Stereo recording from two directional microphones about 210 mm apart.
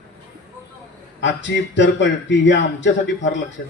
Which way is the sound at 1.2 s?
60° left (ahead or behind).